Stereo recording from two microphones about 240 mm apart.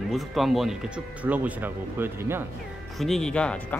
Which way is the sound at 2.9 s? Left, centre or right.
Centre.